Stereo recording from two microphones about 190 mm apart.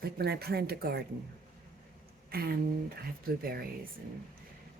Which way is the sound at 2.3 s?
50° right (ahead or behind).